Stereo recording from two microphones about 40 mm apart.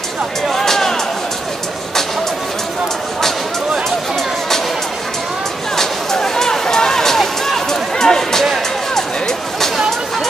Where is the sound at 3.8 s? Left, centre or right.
Centre.